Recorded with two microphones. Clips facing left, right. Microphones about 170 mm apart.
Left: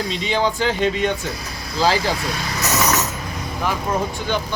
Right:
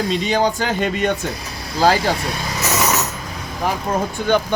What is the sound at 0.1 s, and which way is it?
Speech, 45° right (ahead or behind).